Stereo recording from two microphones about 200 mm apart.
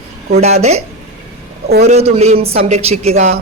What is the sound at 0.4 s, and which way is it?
Speech, 35° right (ahead or behind).